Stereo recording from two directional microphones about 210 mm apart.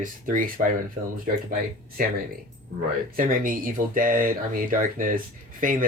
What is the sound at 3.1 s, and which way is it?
Speech, 40° right (ahead or behind).